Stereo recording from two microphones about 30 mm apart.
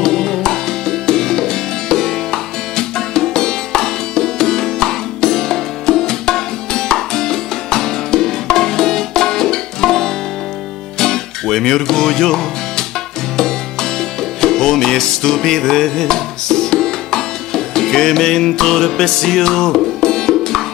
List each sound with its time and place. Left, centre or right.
0.0 s music: centre